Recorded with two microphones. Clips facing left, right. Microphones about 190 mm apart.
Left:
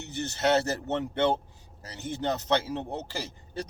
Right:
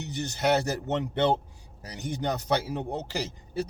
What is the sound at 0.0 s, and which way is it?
Speech, 15° right (ahead or behind).